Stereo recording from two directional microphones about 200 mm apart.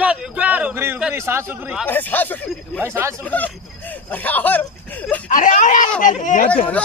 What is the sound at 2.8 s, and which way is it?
Speech, 15° right (ahead or behind).